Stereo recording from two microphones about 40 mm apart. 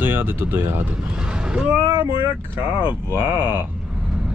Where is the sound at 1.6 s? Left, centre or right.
Right.